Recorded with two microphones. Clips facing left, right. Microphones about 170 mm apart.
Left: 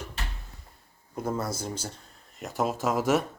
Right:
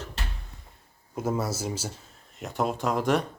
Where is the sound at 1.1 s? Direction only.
5° right (ahead or behind).